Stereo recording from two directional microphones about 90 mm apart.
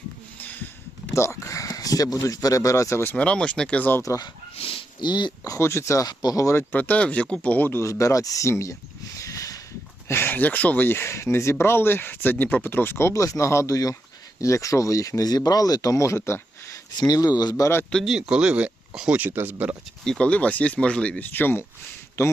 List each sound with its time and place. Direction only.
0.3 s a sound: 20° left (ahead or behind)
1.1 s speech: 35° left (ahead or behind)
3.2 s speech: 15° left (ahead or behind)
4.0 s speech: 40° left (ahead or behind)
4.5 s dog: 90° left
5.0 s speech: 55° left (ahead or behind)
5.5 s speech: 30° left (ahead or behind)
6.1 s speech: 50° left (ahead or behind)
6.4 s speech: 30° left (ahead or behind)
9.1 s a sound: 35° left (ahead or behind)
10.1 s speech: 25° left (ahead or behind)
17.0 s speech: 50° left (ahead or behind); by 17.8 s 30° left (ahead or behind)
17.9 s speech: centre (ahead or behind); by 19.7 s 20° right (ahead or behind)
20.1 s speech: 10° left (ahead or behind)